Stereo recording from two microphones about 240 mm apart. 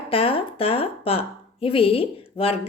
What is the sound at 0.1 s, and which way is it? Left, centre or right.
A woman's voice, left.